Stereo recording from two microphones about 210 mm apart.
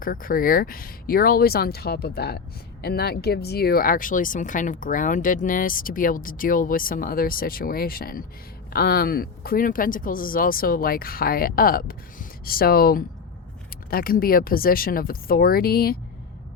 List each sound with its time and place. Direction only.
0.0 s speech: 40° left (ahead or behind)